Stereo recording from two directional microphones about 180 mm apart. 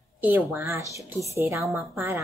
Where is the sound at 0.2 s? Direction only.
15° right (ahead or behind).